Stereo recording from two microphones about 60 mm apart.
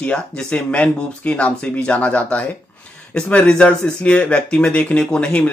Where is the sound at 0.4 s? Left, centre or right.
Centre.